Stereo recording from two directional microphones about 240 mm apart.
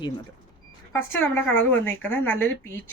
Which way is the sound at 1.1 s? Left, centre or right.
Centre.